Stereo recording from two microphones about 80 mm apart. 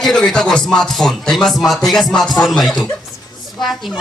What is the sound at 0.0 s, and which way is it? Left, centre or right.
A man's voice, centre.